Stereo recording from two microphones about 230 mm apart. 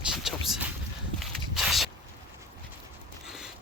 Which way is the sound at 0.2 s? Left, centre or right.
Centre.